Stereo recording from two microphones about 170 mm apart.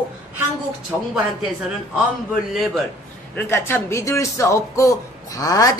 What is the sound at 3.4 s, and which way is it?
A man's voice, 15° left (ahead or behind).